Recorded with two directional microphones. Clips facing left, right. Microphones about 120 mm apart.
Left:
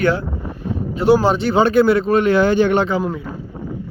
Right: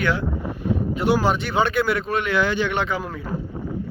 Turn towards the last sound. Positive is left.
turn(degrees=25)  # may be behind; listen again after turning